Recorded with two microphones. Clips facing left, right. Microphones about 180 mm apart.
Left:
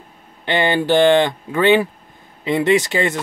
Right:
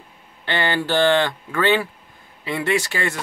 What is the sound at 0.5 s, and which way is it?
Speech, 15° left (ahead or behind).